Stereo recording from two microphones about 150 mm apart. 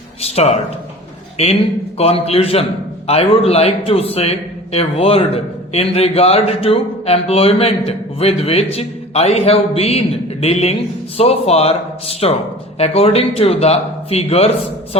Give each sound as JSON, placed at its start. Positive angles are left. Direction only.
{"t": 0.2, "sound": "a man's voice", "side_deg": 45}
{"t": 2.0, "sound": "a man's voice", "side_deg": 40}